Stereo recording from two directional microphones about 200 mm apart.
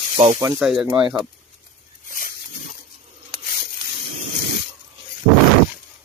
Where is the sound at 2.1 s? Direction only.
45° left (ahead or behind).